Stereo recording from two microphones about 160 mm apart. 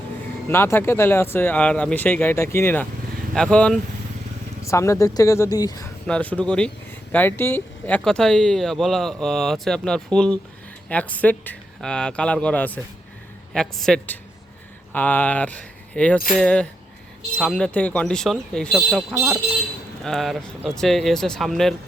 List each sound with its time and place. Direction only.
0.4 s speech: 15° left (ahead or behind)
4.6 s speech: 20° left (ahead or behind)
6.1 s speech: 10° left (ahead or behind)
19.1 s speech: 15° right (ahead or behind)
20.1 s speech: centre (ahead or behind)